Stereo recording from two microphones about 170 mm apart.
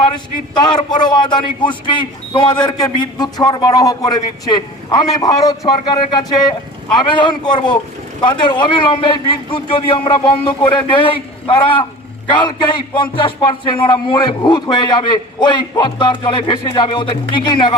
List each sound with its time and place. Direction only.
0.5 s speech: 25° left (ahead or behind)